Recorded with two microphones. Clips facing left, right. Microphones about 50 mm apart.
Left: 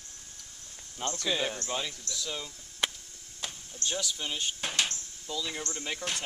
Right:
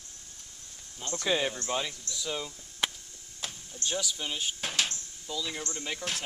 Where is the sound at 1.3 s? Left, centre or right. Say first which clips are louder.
Right 4 dB; centre.